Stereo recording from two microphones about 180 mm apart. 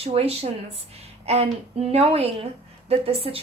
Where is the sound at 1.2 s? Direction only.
35° right (ahead or behind).